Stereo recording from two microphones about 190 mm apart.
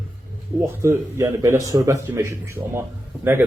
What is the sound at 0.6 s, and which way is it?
Speech, 15° right (ahead or behind).